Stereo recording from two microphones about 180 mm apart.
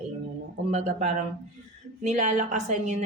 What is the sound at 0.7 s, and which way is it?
A woman's voice, 40° right (ahead or behind).